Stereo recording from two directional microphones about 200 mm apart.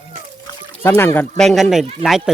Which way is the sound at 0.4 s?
10° left (ahead or behind).